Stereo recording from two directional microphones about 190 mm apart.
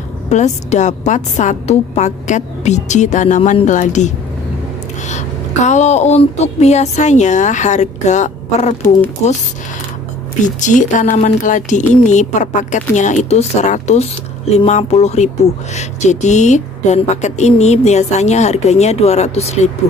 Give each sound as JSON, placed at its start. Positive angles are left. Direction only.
{"t": 0.3, "sound": "a woman's voice", "side_deg": 40}
{"t": 10.4, "sound": "a woman's voice", "side_deg": 40}